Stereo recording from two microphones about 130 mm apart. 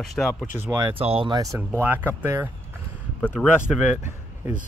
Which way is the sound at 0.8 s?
45° right (ahead or behind).